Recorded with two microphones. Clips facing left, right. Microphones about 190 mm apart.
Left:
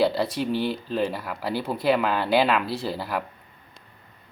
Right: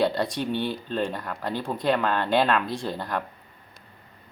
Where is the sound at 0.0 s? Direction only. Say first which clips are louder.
Left 2 dB; 5° left (ahead or behind).